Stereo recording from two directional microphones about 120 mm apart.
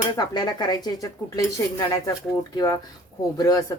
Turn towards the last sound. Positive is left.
turn(degrees=30)  # may be behind; listen again after turning